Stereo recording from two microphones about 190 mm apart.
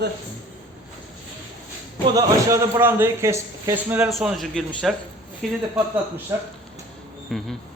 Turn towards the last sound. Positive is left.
turn(degrees=0)  # may be behind; listen again after turning